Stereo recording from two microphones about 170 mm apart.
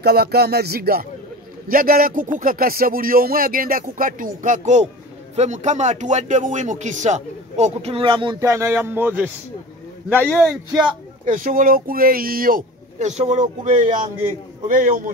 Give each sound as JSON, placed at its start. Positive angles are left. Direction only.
{"t": 0.0, "sound": "speech", "side_deg": -70}
{"t": 10.1, "sound": "speech", "side_deg": 5}
{"t": 11.2, "sound": "speech", "side_deg": -50}
{"t": 14.7, "sound": "a man's voice", "side_deg": -50}